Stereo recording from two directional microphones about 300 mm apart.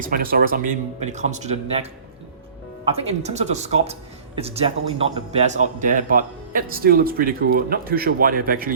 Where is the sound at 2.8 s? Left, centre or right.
Centre.